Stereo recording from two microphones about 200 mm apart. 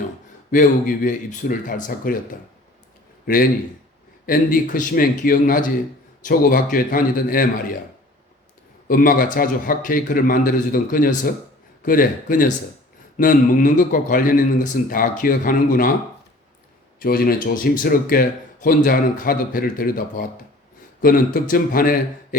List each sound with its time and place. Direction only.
0.5 s speech: 40° left (ahead or behind)
4.3 s speech: 45° left (ahead or behind)
8.9 s speech: 45° left (ahead or behind)
17.0 s speech: 50° left (ahead or behind)